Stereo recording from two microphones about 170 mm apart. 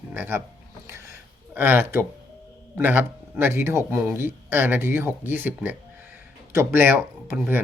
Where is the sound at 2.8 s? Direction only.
10° right (ahead or behind).